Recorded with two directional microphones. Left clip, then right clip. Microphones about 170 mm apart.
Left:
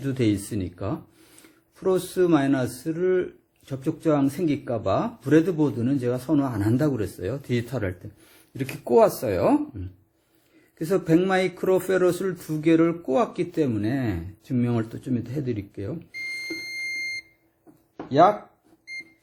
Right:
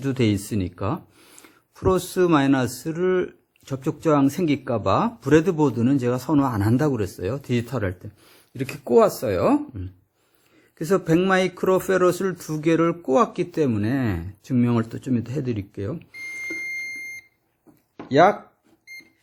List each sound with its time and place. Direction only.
0.0 s a man's voice: 45° right (ahead or behind)
18.1 s speech: 45° right (ahead or behind)